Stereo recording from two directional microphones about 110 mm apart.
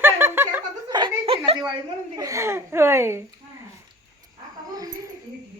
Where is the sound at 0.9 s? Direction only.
40° right (ahead or behind).